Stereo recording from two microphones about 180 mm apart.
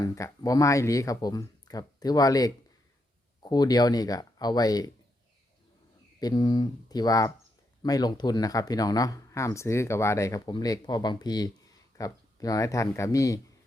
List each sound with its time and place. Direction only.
0.0 s speech: 20° left (ahead or behind)
6.1 s speech: 20° left (ahead or behind)